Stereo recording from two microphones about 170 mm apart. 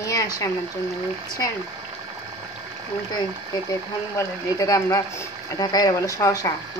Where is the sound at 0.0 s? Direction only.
20° left (ahead or behind).